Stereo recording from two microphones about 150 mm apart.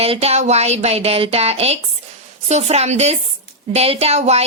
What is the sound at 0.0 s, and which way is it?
Speech, 45° right (ahead or behind).